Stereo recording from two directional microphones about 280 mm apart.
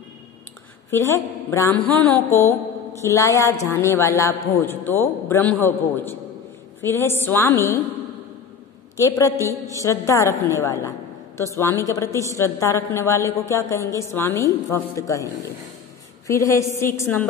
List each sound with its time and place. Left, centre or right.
0.8 s a woman's voice: centre
8.9 s a woman's voice: centre